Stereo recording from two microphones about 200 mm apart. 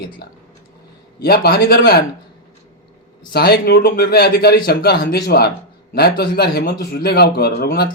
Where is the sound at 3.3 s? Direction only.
50° left (ahead or behind).